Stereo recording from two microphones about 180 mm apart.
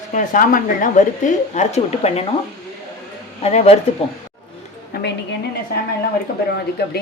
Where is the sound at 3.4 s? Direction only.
35° left (ahead or behind).